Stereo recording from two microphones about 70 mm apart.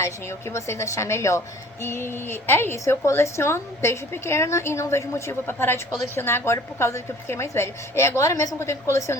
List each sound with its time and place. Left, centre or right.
0.0 s a woman's voice: left